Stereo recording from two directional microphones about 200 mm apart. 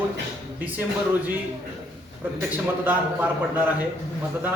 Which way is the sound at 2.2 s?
10° right (ahead or behind).